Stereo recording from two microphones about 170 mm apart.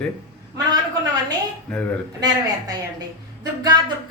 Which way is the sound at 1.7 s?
5° left (ahead or behind).